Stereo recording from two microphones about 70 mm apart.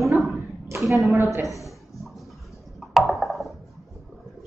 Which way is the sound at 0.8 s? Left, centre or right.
Centre.